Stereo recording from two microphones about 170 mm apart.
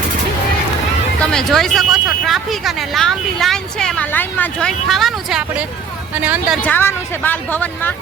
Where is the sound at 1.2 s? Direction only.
5° left (ahead or behind).